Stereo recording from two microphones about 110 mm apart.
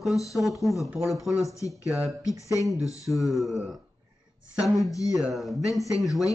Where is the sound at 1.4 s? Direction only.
30° left (ahead or behind).